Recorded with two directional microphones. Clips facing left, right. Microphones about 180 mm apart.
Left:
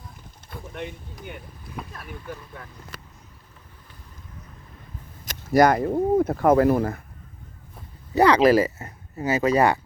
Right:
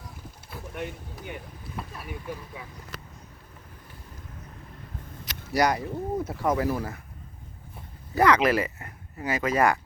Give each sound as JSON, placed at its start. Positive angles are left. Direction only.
{"t": 0.5, "sound": "a sound", "side_deg": -5}
{"t": 1.3, "sound": "speech", "side_deg": -5}
{"t": 5.2, "sound": "speech", "side_deg": 45}
{"t": 8.1, "sound": "speech", "side_deg": 30}